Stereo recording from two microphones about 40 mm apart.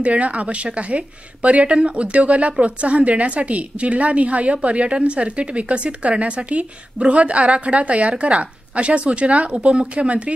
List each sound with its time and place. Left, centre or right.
0.0 s a woman's voice: right